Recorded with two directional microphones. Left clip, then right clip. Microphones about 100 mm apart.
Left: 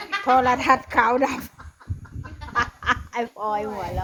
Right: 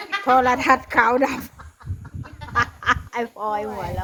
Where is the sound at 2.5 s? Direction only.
20° right (ahead or behind).